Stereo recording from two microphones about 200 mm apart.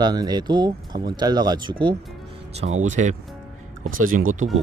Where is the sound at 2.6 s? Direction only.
35° right (ahead or behind).